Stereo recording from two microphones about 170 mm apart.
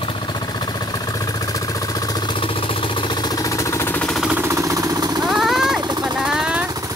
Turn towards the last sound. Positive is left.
turn(degrees=-5)  # may be behind; listen again after turning